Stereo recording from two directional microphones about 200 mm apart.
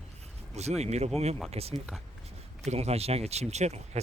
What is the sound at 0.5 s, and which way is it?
Speech, 35° right (ahead or behind).